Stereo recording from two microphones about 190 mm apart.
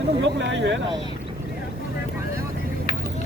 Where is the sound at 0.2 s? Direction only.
70° right (ahead or behind).